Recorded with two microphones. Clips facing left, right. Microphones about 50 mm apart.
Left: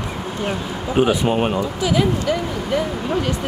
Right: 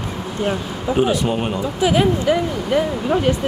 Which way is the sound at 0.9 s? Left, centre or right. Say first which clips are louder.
Left 2 dB; left.